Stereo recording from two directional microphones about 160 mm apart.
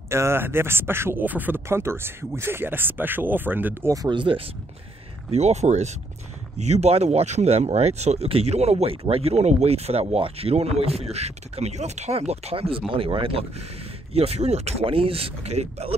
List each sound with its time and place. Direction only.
0.1 s speech: 15° right (ahead or behind)
5.3 s speech: 45° right (ahead or behind)